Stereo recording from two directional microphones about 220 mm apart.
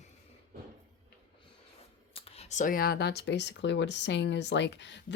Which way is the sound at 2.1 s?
25° left (ahead or behind).